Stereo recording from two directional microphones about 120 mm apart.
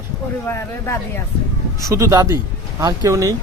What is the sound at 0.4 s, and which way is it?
Speech, 20° left (ahead or behind).